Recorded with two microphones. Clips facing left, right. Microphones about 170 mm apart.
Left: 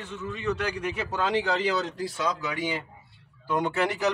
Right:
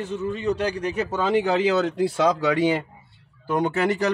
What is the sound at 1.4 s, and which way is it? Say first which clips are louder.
Speech: right 6 dB; 55° right (ahead or behind).